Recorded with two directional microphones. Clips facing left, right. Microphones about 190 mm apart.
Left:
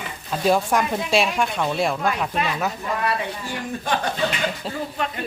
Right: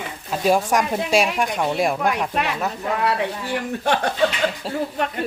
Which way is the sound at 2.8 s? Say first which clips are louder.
Right 3 dB; 70° right (ahead or behind).